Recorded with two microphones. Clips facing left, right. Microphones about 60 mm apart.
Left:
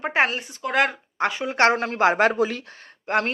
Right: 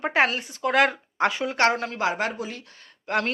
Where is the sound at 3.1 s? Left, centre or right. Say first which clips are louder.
Left 2 dB; centre.